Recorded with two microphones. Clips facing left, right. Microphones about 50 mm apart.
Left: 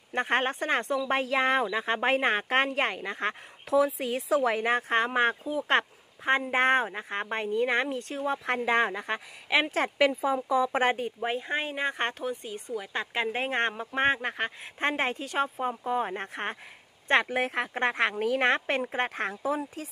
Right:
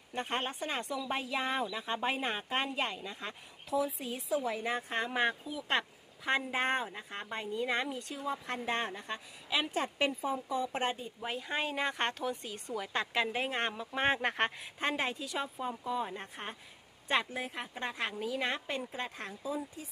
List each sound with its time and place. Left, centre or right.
0.1 s a woman's voice: left
5.7 s speech: left
8.6 s speech: left
11.1 s speech: left
12.4 s speech: centre
13.1 s speech: left
14.2 s speech: centre
14.8 s speech: left
17.1 s a woman's voice: left